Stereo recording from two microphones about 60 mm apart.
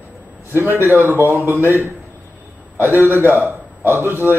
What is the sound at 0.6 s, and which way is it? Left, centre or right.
A man's voice, right.